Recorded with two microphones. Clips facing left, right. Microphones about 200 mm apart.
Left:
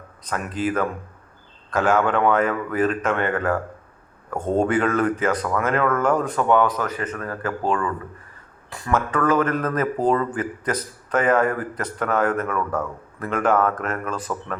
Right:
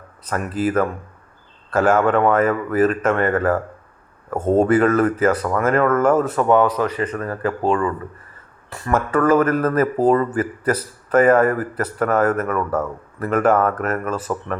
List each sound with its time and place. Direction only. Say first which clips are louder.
0.3 s a man's voice: right 3 dB; 5° right (ahead or behind)
7.4 s speech: right 4 dB; 35° right (ahead or behind)
8.7 s a man's voice: right 3 dB; 5° right (ahead or behind)